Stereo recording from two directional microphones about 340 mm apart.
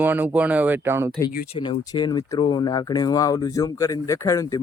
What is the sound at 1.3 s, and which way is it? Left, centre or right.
Speech, left.